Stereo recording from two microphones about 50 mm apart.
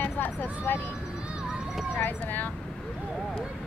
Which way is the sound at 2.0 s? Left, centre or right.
Left.